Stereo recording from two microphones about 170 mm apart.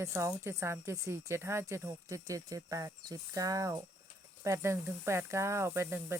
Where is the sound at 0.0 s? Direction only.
15° right (ahead or behind).